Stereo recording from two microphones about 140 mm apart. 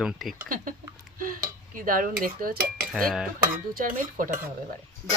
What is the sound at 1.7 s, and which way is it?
Speech, 75° right (ahead or behind).